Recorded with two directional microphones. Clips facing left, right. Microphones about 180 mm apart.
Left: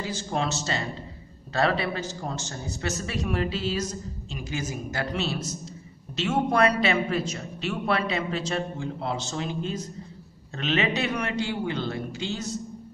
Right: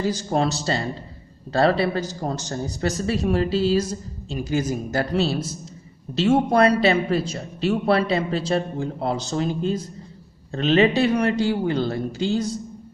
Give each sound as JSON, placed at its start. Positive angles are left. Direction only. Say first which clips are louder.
{"t": 0.0, "sound": "a man's voice", "louder": "right 7 dB", "side_deg": -40}